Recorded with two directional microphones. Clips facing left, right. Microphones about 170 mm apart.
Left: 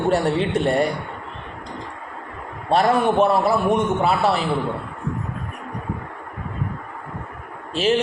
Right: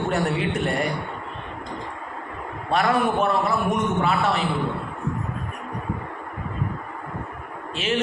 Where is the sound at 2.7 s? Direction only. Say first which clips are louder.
Left 4 dB; 30° left (ahead or behind).